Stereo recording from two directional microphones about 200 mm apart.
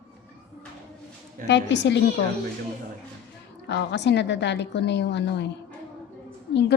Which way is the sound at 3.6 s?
60° left (ahead or behind).